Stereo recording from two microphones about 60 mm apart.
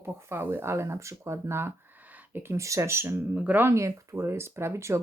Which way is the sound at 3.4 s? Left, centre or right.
Right.